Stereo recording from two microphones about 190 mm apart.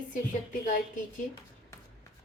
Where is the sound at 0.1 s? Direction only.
45° left (ahead or behind).